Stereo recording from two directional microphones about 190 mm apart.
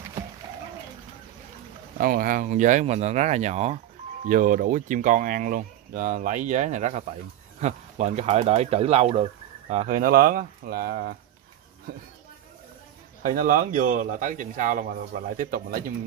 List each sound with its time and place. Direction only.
2.0 s speech: 50° right (ahead or behind)
13.2 s speech: 45° right (ahead or behind)